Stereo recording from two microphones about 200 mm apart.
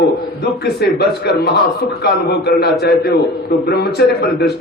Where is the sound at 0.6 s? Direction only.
55° left (ahead or behind).